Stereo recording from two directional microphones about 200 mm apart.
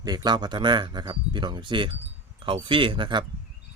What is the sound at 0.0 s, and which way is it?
A man's voice, 20° right (ahead or behind).